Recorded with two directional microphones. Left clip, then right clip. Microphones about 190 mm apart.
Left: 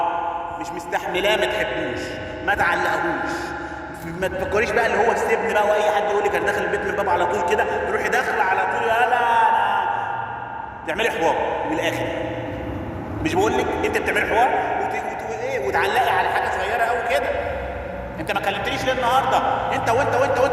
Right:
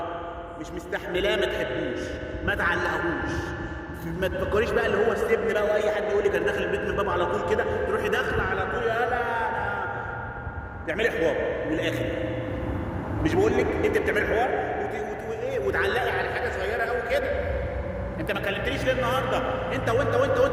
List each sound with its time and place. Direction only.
0.9 s a man's voice: 15° right (ahead or behind)
2.5 s a man's voice: 15° right (ahead or behind)
4.2 s a man's voice: 15° right (ahead or behind)
10.8 s a man's voice: 15° right (ahead or behind)
13.2 s a man's voice: 15° right (ahead or behind)
15.4 s a sound: 20° right (ahead or behind)
18.3 s a man's voice: 20° right (ahead or behind)